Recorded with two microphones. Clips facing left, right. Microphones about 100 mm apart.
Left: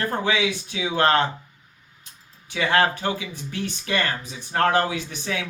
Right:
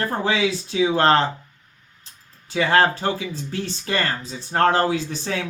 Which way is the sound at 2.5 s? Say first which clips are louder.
Right 3 dB; 35° right (ahead or behind).